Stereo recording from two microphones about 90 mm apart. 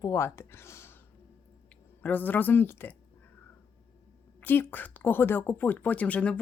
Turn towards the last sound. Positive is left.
turn(degrees=15)  # may be behind; listen again after turning